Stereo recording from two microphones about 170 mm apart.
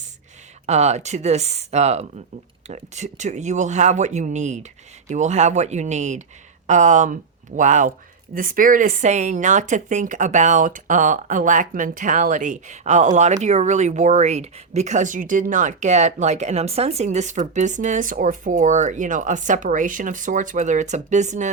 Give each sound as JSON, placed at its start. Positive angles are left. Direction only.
{"t": 0.7, "sound": "a woman's voice", "side_deg": -40}